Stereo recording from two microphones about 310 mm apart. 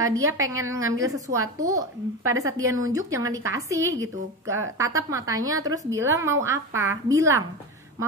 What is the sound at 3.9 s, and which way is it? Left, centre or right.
Speech, right.